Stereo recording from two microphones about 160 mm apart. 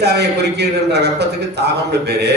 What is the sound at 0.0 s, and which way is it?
A man's voice, 90° right.